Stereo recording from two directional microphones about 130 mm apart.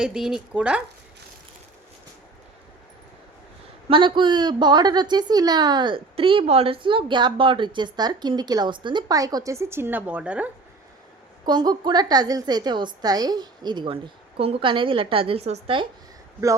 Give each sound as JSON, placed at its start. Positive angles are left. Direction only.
{"t": 0.0, "sound": "speech", "side_deg": -5}
{"t": 3.8, "sound": "a woman's voice", "side_deg": -40}
{"t": 11.4, "sound": "a woman's voice", "side_deg": -30}